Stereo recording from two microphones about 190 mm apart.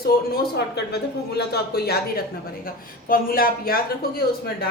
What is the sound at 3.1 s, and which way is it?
Speech, 50° left (ahead or behind).